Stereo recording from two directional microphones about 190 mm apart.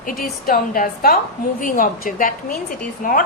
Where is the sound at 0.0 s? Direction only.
50° left (ahead or behind).